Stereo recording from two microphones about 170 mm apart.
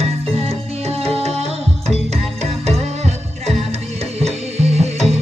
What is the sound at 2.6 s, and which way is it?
Music, 40° right (ahead or behind).